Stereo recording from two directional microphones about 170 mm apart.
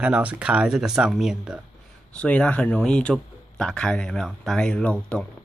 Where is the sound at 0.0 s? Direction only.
5° right (ahead or behind).